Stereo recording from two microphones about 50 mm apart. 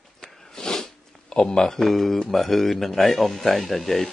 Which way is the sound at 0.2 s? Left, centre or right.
Centre.